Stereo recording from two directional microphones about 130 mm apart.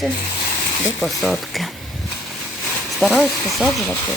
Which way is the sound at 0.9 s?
Centre (ahead or behind).